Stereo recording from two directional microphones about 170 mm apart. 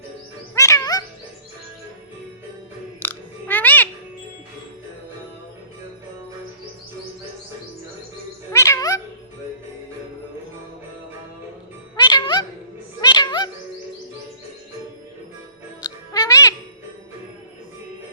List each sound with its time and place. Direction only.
0.5 s music: 20° left (ahead or behind)
3.0 s music: 10° left (ahead or behind)
8.5 s music: 15° left (ahead or behind)
11.9 s music: 25° left (ahead or behind)
15.8 s music: 20° left (ahead or behind)